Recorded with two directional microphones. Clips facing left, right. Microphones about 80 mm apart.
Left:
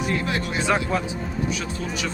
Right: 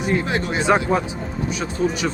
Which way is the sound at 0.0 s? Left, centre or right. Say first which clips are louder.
Right 4 dB; right.